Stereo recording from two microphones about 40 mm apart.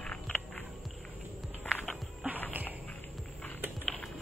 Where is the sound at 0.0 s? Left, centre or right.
Left.